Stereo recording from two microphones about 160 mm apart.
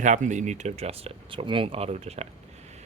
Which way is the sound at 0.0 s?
50° right (ahead or behind).